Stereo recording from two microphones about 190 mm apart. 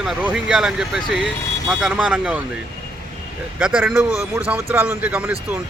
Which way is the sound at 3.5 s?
5° right (ahead or behind).